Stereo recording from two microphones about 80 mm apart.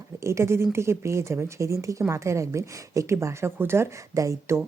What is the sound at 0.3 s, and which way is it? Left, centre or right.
Speech, right.